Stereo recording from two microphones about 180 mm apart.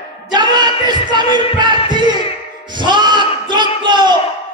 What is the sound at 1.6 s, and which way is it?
Music, 25° right (ahead or behind).